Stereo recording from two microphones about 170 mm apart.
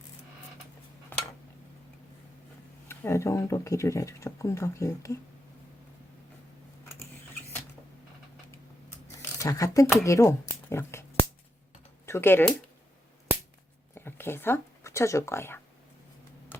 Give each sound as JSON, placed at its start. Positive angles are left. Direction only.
{"t": 1.1, "sound": "dishes", "side_deg": 10}
{"t": 2.9, "sound": "speech", "side_deg": 15}
{"t": 9.2, "sound": "speech", "side_deg": 20}
{"t": 12.0, "sound": "speech", "side_deg": 15}
{"t": 13.9, "sound": "speech", "side_deg": 15}
{"t": 16.5, "sound": "typing", "side_deg": 15}